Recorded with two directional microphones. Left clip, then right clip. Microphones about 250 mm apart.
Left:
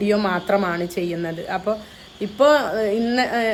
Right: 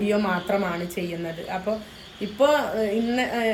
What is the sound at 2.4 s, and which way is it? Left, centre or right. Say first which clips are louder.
A woman's voice: left 4 dB; centre.